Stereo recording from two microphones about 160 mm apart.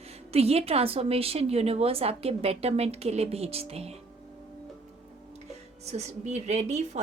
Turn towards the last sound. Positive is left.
turn(degrees=-45)  # may be behind; listen again after turning